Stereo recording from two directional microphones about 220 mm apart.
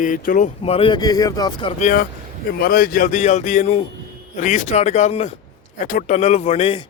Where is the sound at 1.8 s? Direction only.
35° left (ahead or behind).